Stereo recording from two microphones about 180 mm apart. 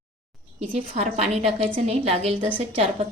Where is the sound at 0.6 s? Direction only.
35° right (ahead or behind).